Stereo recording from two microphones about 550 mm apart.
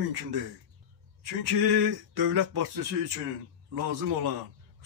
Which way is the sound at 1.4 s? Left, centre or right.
Right.